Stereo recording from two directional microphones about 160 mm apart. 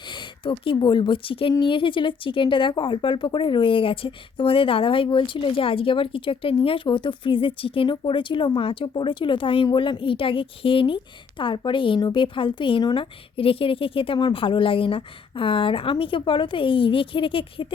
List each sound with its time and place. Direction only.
0.1 s a woman's voice: 30° left (ahead or behind)